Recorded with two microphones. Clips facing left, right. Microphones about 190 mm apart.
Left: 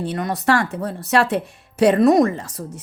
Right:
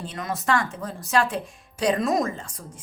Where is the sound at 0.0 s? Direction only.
65° left (ahead or behind).